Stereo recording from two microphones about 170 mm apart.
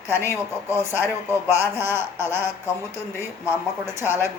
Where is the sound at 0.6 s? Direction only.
15° right (ahead or behind).